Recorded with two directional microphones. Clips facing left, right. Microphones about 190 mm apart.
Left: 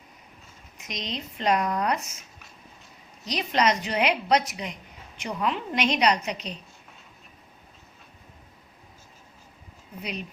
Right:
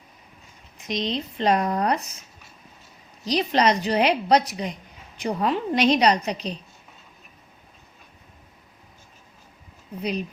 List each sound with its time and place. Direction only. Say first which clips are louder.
0.8 s a woman's voice: right 8 dB; 30° right (ahead or behind)
3.2 s a woman's voice: right 4 dB; 35° right (ahead or behind)
10.0 s a woman's voice: right 7 dB; 35° right (ahead or behind)